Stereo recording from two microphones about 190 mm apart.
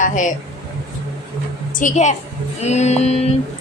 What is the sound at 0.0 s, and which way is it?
Speech, 40° left (ahead or behind).